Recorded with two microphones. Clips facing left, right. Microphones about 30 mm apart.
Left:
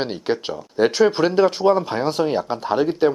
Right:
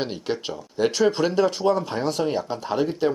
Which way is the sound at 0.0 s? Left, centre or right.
Left.